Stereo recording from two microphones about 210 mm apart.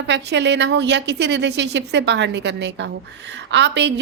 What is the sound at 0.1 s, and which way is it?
A woman's voice, 55° right (ahead or behind).